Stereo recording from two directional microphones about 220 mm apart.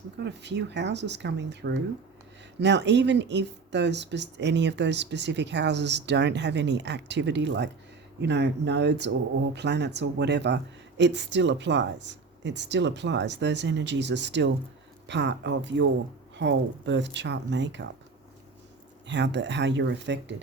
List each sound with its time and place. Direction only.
0.2 s speech: 50° right (ahead or behind)
19.0 s speech: 55° right (ahead or behind)